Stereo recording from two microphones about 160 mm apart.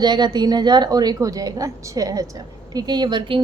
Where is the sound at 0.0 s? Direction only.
25° right (ahead or behind).